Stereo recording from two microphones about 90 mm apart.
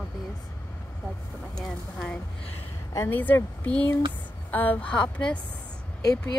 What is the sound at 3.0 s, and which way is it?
Speech, 20° left (ahead or behind).